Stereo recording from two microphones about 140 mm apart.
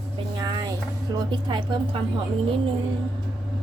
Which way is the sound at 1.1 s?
35° right (ahead or behind).